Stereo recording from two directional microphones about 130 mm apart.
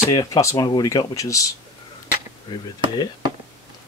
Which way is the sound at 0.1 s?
25° left (ahead or behind).